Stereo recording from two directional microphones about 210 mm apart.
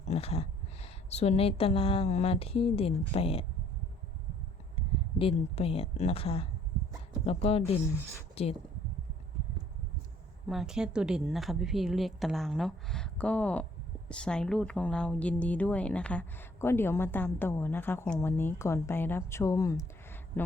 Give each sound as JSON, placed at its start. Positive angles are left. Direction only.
{"t": 0.1, "sound": "speech", "side_deg": 30}
{"t": 5.1, "sound": "speech", "side_deg": 25}
{"t": 10.5, "sound": "speech", "side_deg": 0}